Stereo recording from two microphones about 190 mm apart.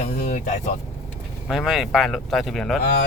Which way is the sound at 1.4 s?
Centre (ahead or behind).